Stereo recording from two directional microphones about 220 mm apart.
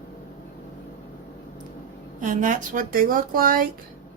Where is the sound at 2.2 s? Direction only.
35° right (ahead or behind).